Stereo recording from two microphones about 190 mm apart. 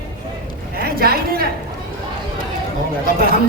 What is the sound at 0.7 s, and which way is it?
Speech, 50° right (ahead or behind).